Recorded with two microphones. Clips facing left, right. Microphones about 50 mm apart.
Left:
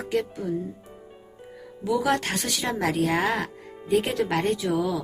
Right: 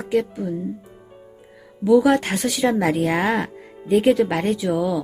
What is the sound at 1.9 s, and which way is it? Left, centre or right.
A woman's voice, centre.